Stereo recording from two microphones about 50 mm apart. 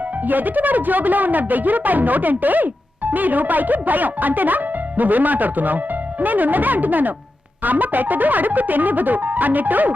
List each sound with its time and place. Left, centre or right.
0.3 s speech: right